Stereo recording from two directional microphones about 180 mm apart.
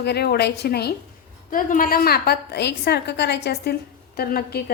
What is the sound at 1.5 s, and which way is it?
A woman's voice, 50° left (ahead or behind).